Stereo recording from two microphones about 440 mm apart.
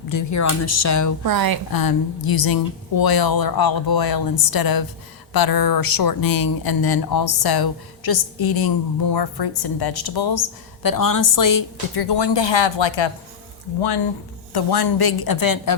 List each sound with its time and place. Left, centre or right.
0.1 s speech: left
1.2 s speech: right
1.7 s speech: left
14.5 s speech: left